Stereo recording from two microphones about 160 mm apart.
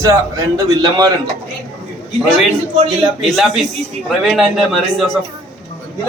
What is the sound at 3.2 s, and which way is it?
A man's voice, centre (ahead or behind).